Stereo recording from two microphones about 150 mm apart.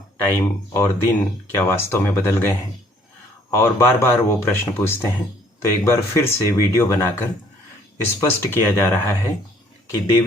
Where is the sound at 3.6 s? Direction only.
20° left (ahead or behind).